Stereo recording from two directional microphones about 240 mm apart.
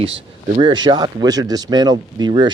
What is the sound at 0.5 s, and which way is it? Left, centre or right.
Speech, centre.